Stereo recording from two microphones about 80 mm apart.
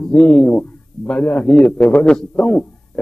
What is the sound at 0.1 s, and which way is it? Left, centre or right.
A man's voice, centre.